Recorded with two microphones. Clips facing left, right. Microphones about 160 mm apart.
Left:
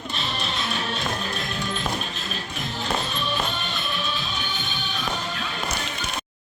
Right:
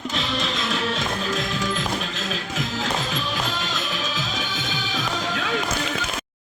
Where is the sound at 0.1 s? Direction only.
90° right.